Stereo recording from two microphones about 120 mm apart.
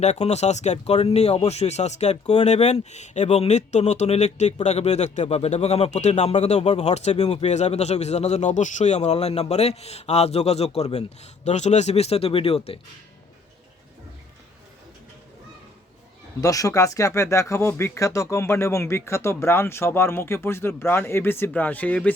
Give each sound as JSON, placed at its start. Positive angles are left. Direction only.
{"t": 0.0, "sound": "speech", "side_deg": 65}
{"t": 16.4, "sound": "speech", "side_deg": 30}